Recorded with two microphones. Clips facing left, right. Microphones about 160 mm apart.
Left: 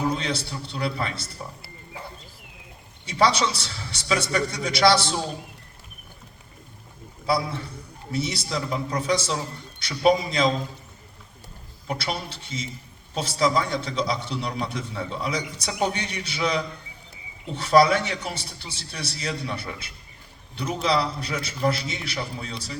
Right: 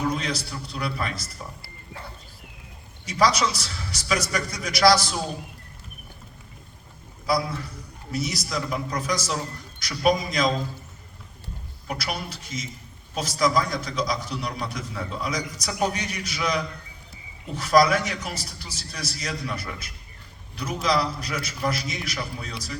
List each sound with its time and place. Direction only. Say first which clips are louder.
0.0 s a man's voice: left 1 dB; 30° left (ahead or behind)
3.1 s a man's voice: even; 30° left (ahead or behind)
7.3 s a man's voice: even; 30° left (ahead or behind)
11.9 s a man's voice: left 1 dB; 30° left (ahead or behind)